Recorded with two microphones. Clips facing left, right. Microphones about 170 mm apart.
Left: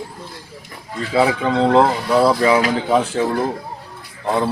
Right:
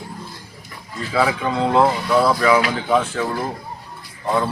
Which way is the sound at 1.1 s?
30° left (ahead or behind).